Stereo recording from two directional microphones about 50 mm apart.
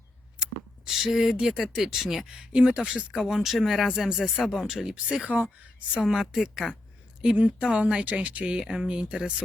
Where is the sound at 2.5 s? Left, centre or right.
Centre.